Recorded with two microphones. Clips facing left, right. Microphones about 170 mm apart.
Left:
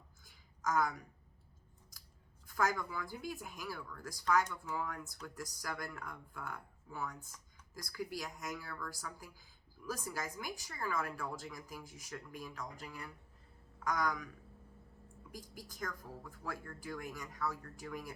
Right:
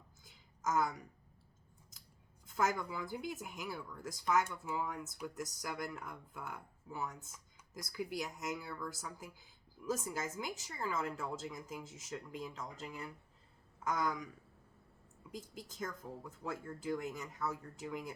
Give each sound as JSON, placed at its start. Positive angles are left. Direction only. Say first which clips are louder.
{"t": 0.3, "sound": "a sound", "louder": "even", "side_deg": -20}
{"t": 2.5, "sound": "speech", "louder": "even", "side_deg": -20}
{"t": 15.3, "sound": "speech", "louder": "right 3 dB", "side_deg": -25}